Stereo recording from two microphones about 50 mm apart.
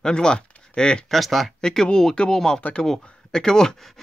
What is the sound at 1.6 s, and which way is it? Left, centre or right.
Speech, centre.